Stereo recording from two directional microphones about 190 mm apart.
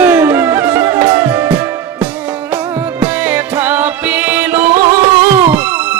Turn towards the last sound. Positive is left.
turn(degrees=-10)  # may be behind; listen again after turning